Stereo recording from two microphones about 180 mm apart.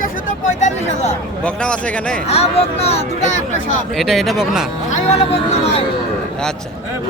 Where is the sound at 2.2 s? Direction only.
35° left (ahead or behind).